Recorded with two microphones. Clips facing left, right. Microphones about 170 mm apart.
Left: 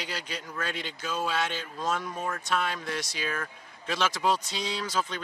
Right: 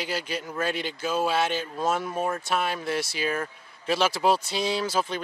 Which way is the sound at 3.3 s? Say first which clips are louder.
Right 5 dB; 30° right (ahead or behind).